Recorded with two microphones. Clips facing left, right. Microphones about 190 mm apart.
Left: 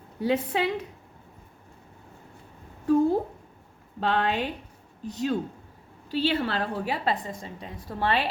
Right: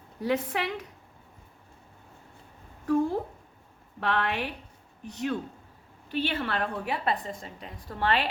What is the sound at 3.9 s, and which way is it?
Speech, 25° left (ahead or behind).